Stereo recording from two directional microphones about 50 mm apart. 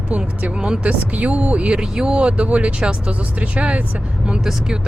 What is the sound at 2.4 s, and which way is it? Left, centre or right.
Speech, right.